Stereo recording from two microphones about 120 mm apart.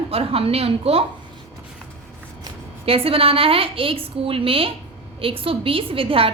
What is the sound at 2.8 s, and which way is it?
A woman's voice, 50° right (ahead or behind).